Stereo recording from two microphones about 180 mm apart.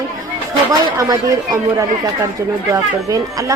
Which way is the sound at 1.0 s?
20° right (ahead or behind).